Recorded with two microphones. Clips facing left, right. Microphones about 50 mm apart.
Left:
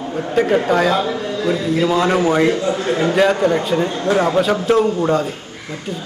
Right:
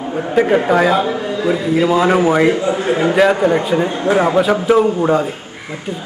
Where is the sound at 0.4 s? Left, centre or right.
Right.